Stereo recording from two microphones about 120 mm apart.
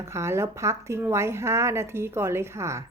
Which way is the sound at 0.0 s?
25° right (ahead or behind).